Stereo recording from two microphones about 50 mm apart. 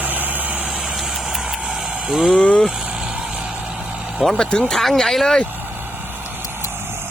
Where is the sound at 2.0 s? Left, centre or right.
Centre.